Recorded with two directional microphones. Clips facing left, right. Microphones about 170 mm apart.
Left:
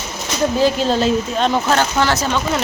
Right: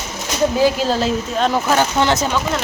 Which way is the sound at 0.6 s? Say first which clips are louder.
Left 2 dB; 10° right (ahead or behind).